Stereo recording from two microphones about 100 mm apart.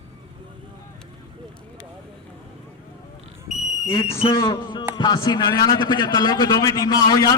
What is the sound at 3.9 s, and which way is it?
Speech, 75° left (ahead or behind).